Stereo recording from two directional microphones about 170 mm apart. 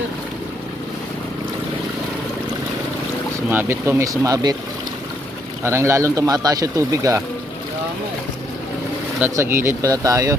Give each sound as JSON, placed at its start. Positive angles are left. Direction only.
{"t": 3.5, "sound": "speech", "side_deg": -15}
{"t": 5.6, "sound": "speech", "side_deg": -15}
{"t": 9.2, "sound": "speech", "side_deg": -15}